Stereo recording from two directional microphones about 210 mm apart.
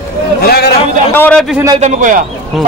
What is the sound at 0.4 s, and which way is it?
Speech, 50° left (ahead or behind).